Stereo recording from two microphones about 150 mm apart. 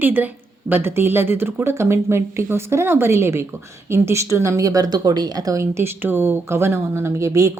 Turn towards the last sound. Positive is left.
turn(degrees=-20)  # may be behind; listen again after turning